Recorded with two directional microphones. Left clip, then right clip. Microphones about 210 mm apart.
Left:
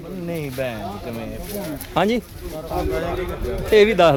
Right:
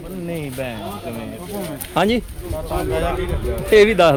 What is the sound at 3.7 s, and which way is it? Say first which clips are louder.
Speech: right 2 dB; 5° right (ahead or behind).